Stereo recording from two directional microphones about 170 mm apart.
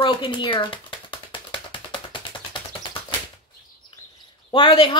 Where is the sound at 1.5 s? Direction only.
30° left (ahead or behind).